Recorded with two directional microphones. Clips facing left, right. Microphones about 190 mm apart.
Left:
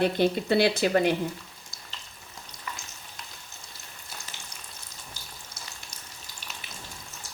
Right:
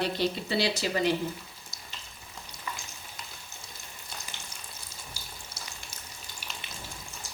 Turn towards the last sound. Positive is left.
turn(degrees=-10)  # may be behind; listen again after turning